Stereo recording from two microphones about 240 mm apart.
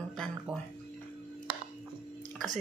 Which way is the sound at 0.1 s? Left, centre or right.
Centre.